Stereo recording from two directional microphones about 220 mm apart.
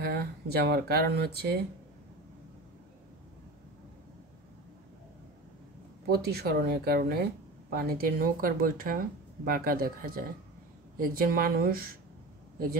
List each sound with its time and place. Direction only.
0.0 s speech: 45° right (ahead or behind)
6.0 s speech: 45° right (ahead or behind)